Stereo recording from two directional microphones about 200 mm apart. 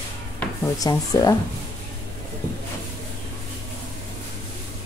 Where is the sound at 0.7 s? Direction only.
20° left (ahead or behind).